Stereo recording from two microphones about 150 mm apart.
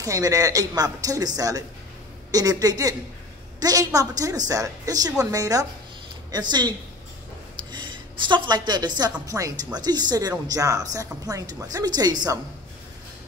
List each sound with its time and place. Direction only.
0.0 s speech: 25° right (ahead or behind)
7.7 s a woman's voice: 30° right (ahead or behind)